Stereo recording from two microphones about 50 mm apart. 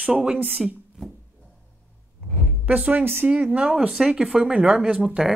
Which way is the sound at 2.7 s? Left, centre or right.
Right.